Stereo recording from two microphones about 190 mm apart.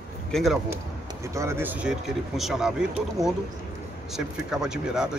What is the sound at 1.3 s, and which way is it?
Speech, 15° right (ahead or behind).